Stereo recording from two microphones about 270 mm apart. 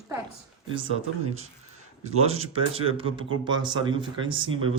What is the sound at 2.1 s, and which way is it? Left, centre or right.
Speech, right.